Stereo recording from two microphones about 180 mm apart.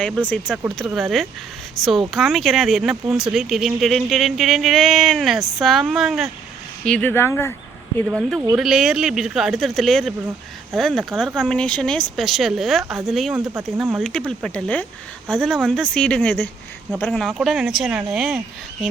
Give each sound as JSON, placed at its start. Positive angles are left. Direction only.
{"t": 0.0, "sound": "speech", "side_deg": 5}
{"t": 8.0, "sound": "speech", "side_deg": 0}
{"t": 13.3, "sound": "speech", "side_deg": -15}